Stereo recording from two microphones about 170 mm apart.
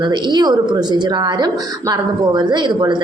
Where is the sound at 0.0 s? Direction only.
25° right (ahead or behind).